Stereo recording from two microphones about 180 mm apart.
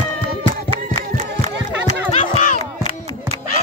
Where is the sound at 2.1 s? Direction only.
35° left (ahead or behind).